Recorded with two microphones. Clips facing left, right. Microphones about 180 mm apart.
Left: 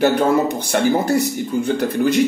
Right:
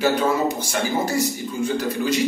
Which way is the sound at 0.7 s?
60° left (ahead or behind).